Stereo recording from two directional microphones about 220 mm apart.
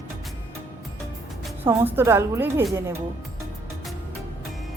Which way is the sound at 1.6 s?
10° right (ahead or behind).